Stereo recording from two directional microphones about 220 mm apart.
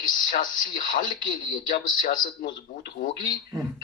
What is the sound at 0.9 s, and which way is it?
Speech, 40° left (ahead or behind).